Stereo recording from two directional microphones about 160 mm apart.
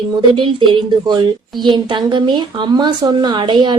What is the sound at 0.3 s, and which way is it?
A woman's voice, 30° right (ahead or behind).